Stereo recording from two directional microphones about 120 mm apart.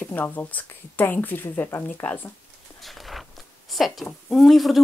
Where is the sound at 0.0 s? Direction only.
15° left (ahead or behind).